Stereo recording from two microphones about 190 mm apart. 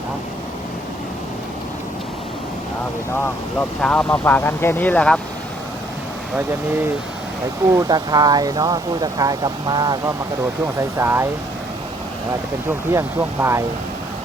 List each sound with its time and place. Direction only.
3.2 s speech: 5° left (ahead or behind)
7.7 s speech: 20° right (ahead or behind)
12.6 s speech: 15° right (ahead or behind)